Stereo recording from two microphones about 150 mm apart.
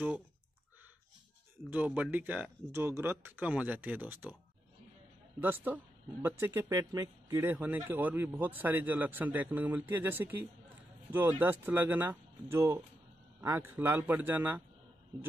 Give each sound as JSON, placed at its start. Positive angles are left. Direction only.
{"t": 1.7, "sound": "speech", "side_deg": -10}
{"t": 5.4, "sound": "speech", "side_deg": -15}
{"t": 7.4, "sound": "speech", "side_deg": -10}